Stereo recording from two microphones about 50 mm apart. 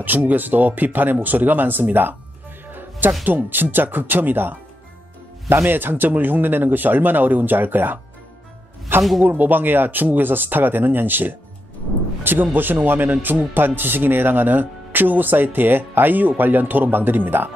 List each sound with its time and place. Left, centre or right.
0.0 s speech: right
3.3 s speech: right
9.2 s speech: right